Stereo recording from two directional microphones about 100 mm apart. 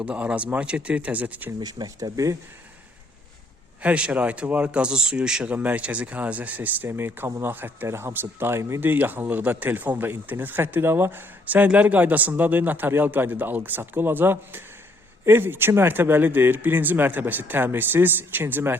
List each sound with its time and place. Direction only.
0.0 s speech: 10° right (ahead or behind)
1.5 s speech: 40° right (ahead or behind)
3.8 s speech: 10° right (ahead or behind)